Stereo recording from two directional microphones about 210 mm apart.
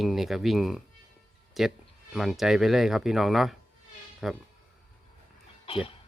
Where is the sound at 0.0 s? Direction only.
Centre (ahead or behind).